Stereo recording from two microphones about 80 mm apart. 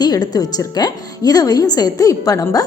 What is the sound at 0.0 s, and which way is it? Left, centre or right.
A woman's voice, left.